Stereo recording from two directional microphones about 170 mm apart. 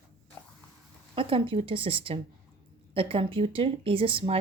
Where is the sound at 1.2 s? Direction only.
30° right (ahead or behind).